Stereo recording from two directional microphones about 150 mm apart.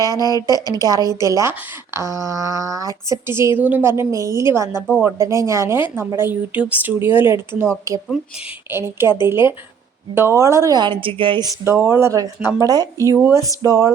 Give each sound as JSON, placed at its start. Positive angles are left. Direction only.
{"t": 0.0, "sound": "a woman's voice", "side_deg": -25}
{"t": 8.7, "sound": "a woman's voice", "side_deg": -15}
{"t": 11.6, "sound": "a woman's voice", "side_deg": -15}
{"t": 13.1, "sound": "speech", "side_deg": -10}
{"t": 13.6, "sound": "a woman's voice", "side_deg": -20}